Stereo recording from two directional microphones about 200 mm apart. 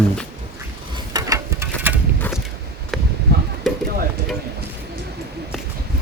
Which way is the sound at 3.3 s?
55° right (ahead or behind).